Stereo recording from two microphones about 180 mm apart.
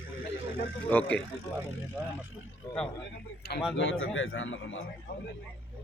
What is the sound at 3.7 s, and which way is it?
A man's voice, 90° left.